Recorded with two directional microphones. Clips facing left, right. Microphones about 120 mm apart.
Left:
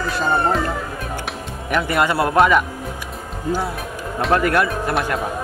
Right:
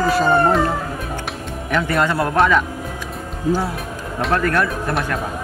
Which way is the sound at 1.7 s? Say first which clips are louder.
Even; 10° left (ahead or behind).